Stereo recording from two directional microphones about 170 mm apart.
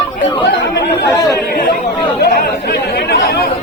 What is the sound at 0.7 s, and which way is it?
Speech, 80° left.